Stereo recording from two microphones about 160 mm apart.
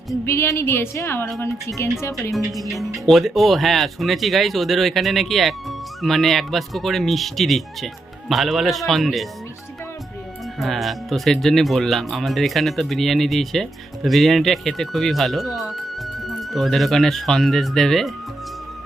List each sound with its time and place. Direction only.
0.1 s a woman's voice: 15° left (ahead or behind)
2.5 s speech: centre (ahead or behind)
10.6 s speech: centre (ahead or behind)